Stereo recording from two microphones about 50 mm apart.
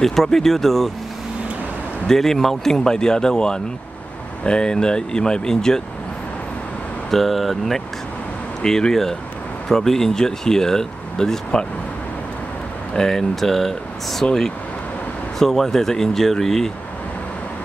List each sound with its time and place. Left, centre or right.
0.0 s speech: centre
2.0 s speech: centre
7.1 s speech: centre
12.9 s speech: centre
15.3 s speech: centre